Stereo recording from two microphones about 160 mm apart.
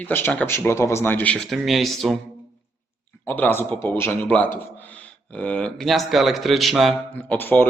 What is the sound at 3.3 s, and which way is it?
A man's voice, 10° left (ahead or behind).